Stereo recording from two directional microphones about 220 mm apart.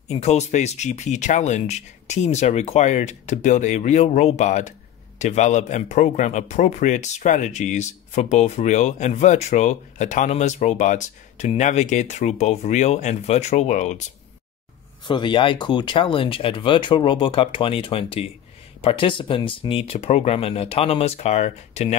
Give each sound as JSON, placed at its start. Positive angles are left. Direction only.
{"t": 0.1, "sound": "speech", "side_deg": 30}
{"t": 15.0, "sound": "speech", "side_deg": 20}